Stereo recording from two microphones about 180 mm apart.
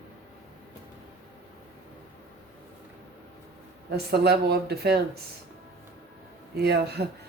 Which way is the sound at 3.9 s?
60° right (ahead or behind).